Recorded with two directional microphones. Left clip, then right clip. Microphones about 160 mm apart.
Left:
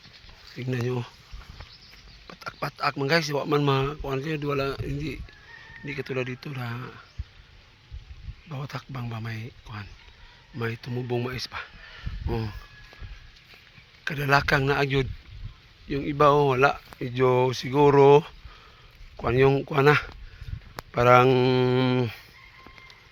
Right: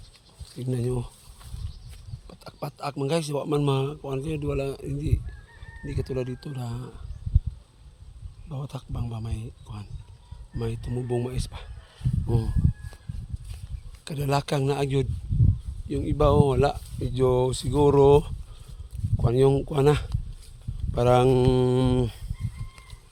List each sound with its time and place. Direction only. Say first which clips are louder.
0.5 s speech: even; 20° right (ahead or behind)
3.1 s speech: left 1 dB; 5° right (ahead or behind); by 6.5 s 20° right (ahead or behind)
6.5 s speech: left 3 dB; 15° left (ahead or behind)
8.9 s speech: left 2 dB; 30° left (ahead or behind)
9.2 s speech: left 4 dB; 15° right (ahead or behind)
10.6 s speech: left 1 dB; 15° right (ahead or behind)
14.0 s speech: left 5 dB; 15° right (ahead or behind)
16.7 s speech: left 1 dB; 10° right (ahead or behind)